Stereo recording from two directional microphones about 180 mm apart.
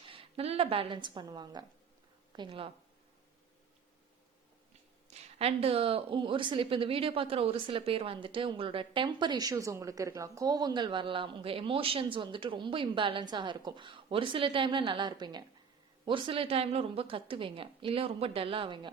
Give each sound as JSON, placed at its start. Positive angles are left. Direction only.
{"t": 0.0, "sound": "a woman's voice", "side_deg": -30}
{"t": 5.1, "sound": "a woman's voice", "side_deg": -35}